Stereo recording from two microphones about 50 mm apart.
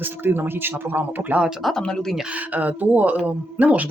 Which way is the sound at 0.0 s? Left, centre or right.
Right.